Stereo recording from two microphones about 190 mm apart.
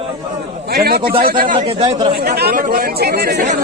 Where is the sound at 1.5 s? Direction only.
30° right (ahead or behind).